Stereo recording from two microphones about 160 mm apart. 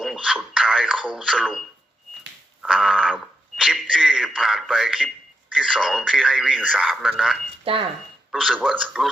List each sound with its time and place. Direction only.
0.0 s radio: centre (ahead or behind)
2.6 s a sound: 5° right (ahead or behind)
5.5 s speech: 5° right (ahead or behind)
7.6 s speech: 35° right (ahead or behind)
8.3 s speech: 5° right (ahead or behind)